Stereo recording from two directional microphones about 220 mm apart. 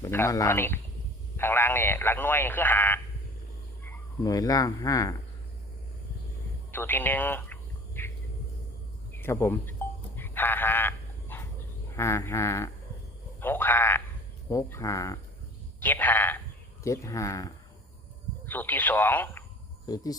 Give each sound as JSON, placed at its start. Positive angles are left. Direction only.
{"t": 0.0, "sound": "speech", "side_deg": 10}
{"t": 4.2, "sound": "speech", "side_deg": 15}
{"t": 6.7, "sound": "a sound", "side_deg": 10}
{"t": 9.1, "sound": "sheep", "side_deg": 10}
{"t": 11.9, "sound": "speech", "side_deg": 10}